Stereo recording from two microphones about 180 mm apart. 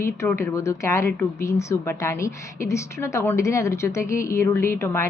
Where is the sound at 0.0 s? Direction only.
15° left (ahead or behind).